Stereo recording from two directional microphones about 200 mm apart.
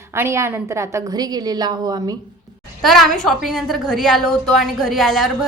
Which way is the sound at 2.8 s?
Centre (ahead or behind).